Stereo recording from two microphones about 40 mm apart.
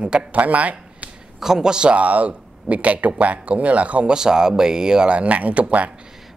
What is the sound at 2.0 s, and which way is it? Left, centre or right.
A man's voice, right.